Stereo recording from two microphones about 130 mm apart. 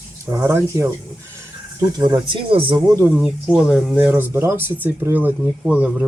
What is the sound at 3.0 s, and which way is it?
Speech, 10° right (ahead or behind).